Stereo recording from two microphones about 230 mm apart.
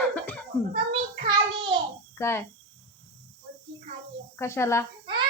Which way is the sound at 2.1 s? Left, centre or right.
Centre.